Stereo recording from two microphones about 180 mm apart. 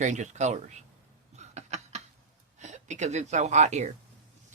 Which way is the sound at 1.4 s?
40° right (ahead or behind).